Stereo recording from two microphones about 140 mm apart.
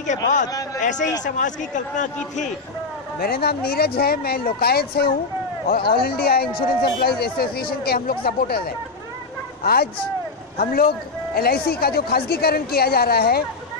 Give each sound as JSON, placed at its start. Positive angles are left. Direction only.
{"t": 0.0, "sound": "speech", "side_deg": 60}
{"t": 3.2, "sound": "speech", "side_deg": 90}
{"t": 10.6, "sound": "speech", "side_deg": 90}